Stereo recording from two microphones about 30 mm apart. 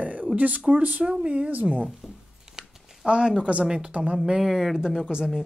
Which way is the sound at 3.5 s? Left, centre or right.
Right.